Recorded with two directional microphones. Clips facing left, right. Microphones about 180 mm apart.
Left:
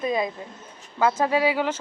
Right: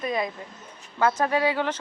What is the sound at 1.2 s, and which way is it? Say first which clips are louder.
Speech: left 2 dB; 10° left (ahead or behind).